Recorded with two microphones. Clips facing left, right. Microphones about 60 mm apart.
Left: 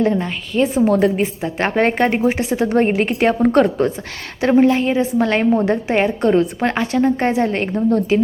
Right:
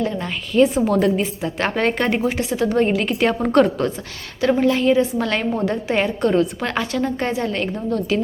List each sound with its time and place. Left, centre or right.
0.2 s a woman's voice: centre
2.6 s a woman's voice: left
3.2 s a woman's voice: centre